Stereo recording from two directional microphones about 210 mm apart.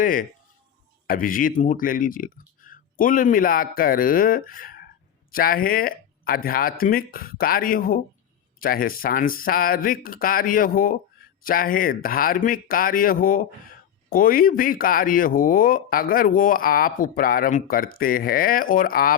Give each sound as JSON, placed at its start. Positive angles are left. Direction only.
{"t": 0.0, "sound": "speech", "side_deg": 40}